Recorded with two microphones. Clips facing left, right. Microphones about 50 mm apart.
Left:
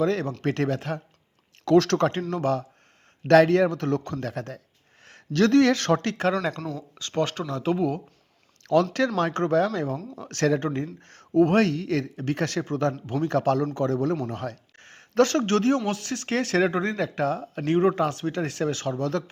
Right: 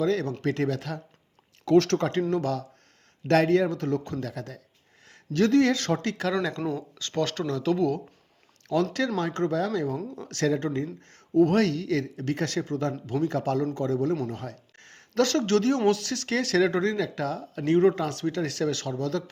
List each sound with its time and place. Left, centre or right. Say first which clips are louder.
0.0 s speech: left 1 dB; left
0.4 s speech: left 2 dB; left
0.7 s speech: left 3 dB; left
1.7 s speech: left 1 dB; left
2.3 s speech: left 2 dB; left
3.5 s speech: left 2 dB; left
5.3 s speech: left 2 dB; left
6.9 s speech: left 2 dB; left
8.6 s speech: left 4 dB; left
9.1 s speech: left 5 dB; left
11.0 s speech: left 3 dB; left
11.3 s speech: left 1 dB; left
13.2 s speech: left 4 dB; left